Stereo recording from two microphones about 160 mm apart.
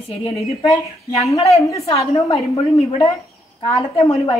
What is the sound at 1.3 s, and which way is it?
Speech, 40° left (ahead or behind).